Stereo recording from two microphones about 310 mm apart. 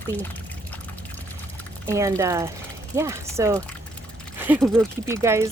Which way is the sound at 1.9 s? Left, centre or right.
Centre.